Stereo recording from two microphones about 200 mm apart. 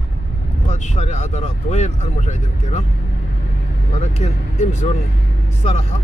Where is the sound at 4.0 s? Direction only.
30° left (ahead or behind).